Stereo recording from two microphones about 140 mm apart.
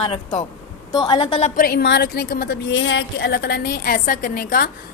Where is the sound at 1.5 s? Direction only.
90° left.